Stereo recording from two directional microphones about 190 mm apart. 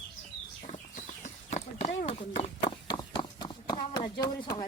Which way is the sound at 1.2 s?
35° left (ahead or behind).